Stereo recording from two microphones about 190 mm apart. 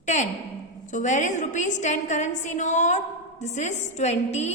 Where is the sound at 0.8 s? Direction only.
40° left (ahead or behind).